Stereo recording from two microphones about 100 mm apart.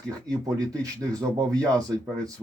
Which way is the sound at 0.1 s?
35° right (ahead or behind).